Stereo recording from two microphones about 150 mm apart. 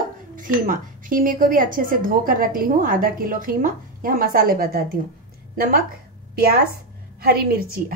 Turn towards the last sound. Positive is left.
turn(degrees=-85)